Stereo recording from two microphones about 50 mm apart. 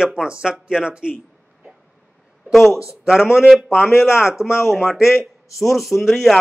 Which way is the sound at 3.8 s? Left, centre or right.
Centre.